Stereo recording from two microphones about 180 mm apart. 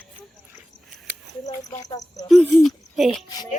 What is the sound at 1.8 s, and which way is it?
Speech, 20° left (ahead or behind).